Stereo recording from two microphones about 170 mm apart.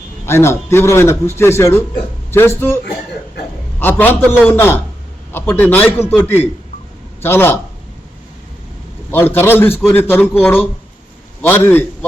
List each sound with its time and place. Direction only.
0.3 s a man's voice: 15° left (ahead or behind)
3.8 s a man's voice: 10° left (ahead or behind)
9.0 s a man's voice: 15° left (ahead or behind)